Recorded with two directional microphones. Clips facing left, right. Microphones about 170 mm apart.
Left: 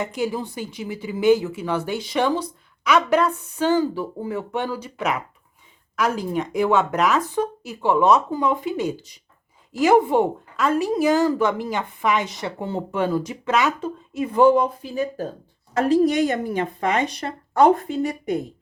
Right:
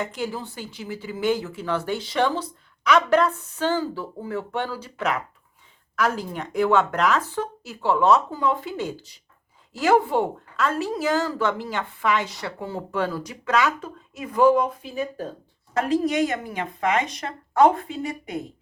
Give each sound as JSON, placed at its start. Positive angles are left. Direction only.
{"t": 0.1, "sound": "a woman's voice", "side_deg": 15}